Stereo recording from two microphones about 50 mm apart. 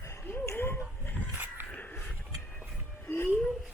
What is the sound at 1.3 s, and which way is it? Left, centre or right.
Dog, right.